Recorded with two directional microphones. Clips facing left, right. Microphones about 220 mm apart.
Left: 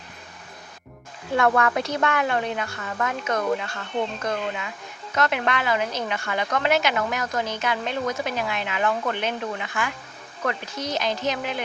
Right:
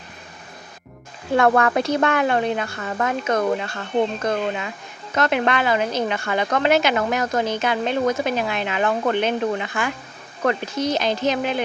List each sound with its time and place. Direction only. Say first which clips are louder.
1.4 s a woman's voice: right 4 dB; 35° right (ahead or behind)